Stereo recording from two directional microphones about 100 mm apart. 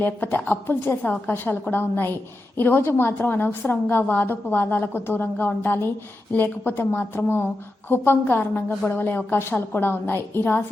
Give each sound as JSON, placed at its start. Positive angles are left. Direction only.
{"t": 0.0, "sound": "a woman's voice", "side_deg": 20}